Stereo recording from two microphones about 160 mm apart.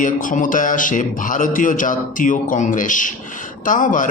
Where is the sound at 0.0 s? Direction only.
55° left (ahead or behind).